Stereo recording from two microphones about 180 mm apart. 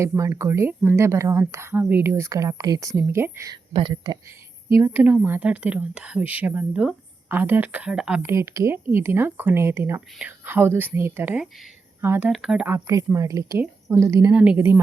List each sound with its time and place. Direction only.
0.0 s speech: 15° right (ahead or behind)
3.7 s speech: 30° right (ahead or behind)
4.7 s speech: 10° right (ahead or behind)